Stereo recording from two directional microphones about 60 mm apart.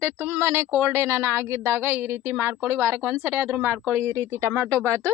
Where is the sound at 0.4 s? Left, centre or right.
Right.